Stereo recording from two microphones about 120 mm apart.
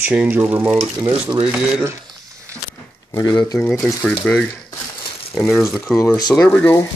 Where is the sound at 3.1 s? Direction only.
30° left (ahead or behind).